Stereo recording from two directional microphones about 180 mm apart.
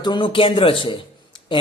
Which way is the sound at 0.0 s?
25° left (ahead or behind).